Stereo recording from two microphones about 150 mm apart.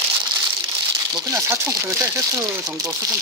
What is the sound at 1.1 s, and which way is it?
Speech, 20° right (ahead or behind).